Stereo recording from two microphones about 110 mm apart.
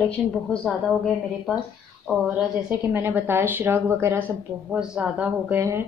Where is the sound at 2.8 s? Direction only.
25° right (ahead or behind).